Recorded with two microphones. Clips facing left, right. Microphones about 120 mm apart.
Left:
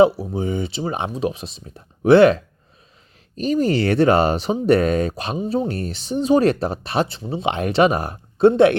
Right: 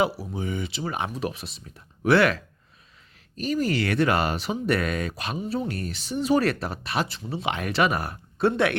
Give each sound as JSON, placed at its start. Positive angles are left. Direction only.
{"t": 0.2, "sound": "speech", "side_deg": 30}